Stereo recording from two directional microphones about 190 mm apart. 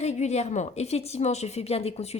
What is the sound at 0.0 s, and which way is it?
A woman's voice, 35° left (ahead or behind).